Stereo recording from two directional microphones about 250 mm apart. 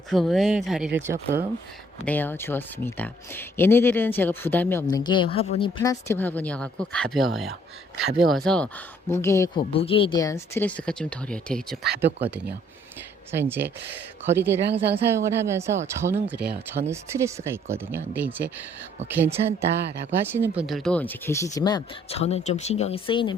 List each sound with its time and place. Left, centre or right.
0.1 s speech: centre
2.0 s speech: centre
13.3 s speech: centre
14.7 s speech: right
15.0 s speech: centre